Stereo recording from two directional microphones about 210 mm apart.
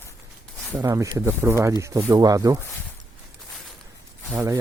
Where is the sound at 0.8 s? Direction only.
15° right (ahead or behind).